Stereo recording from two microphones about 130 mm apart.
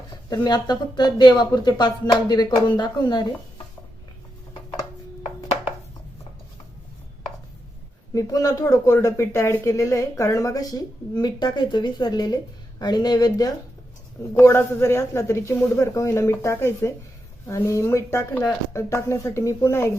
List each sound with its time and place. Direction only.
0.3 s speech: 30° left (ahead or behind)
8.1 s speech: 25° left (ahead or behind)